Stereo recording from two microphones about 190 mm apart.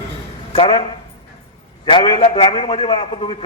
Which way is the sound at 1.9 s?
25° left (ahead or behind).